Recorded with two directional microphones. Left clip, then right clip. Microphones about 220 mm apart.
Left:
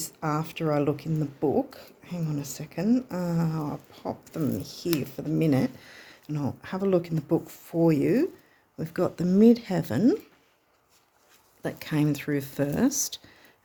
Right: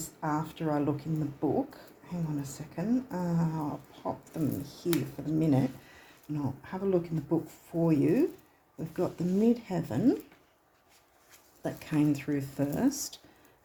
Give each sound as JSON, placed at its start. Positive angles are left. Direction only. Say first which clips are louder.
{"t": 0.2, "sound": "speech", "louder": "left 3 dB", "side_deg": 45}
{"t": 11.6, "sound": "speech", "louder": "left 2 dB", "side_deg": 40}